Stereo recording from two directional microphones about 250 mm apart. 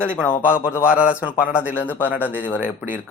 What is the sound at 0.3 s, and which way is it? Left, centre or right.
Speech, centre.